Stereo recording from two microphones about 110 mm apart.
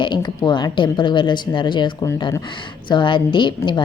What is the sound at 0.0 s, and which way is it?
Speech, 45° left (ahead or behind).